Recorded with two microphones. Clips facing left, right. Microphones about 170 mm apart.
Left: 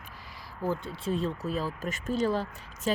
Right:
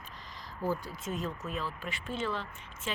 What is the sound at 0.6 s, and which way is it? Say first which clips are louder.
Speech: left 4 dB; 25° left (ahead or behind).